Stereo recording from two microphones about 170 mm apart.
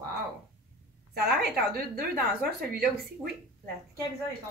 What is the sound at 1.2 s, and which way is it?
A woman's voice, 70° right (ahead or behind).